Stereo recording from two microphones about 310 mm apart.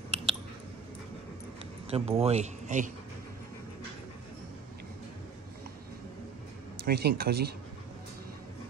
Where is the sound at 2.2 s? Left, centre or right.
Right.